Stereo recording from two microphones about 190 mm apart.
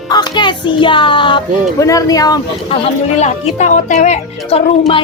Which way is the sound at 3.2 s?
40° left (ahead or behind).